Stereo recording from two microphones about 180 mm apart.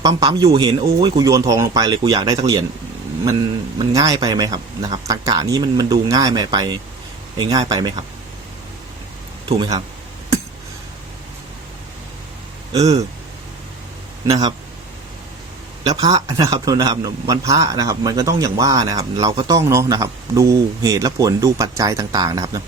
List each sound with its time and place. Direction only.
0.0 s a man's voice: 20° right (ahead or behind)
3.8 s a man's voice: 20° right (ahead or behind)
9.5 s a man's voice: 20° right (ahead or behind)
12.7 s a man's voice: 20° right (ahead or behind)
14.3 s a man's voice: 20° right (ahead or behind)
15.8 s a man's voice: 20° right (ahead or behind)